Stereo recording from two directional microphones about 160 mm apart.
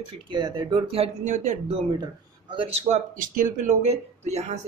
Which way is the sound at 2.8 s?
50° right (ahead or behind).